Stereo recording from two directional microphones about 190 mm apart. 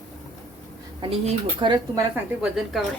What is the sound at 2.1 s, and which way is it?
Speech, 5° right (ahead or behind).